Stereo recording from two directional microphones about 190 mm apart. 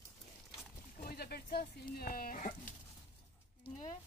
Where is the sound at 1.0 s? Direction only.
55° left (ahead or behind).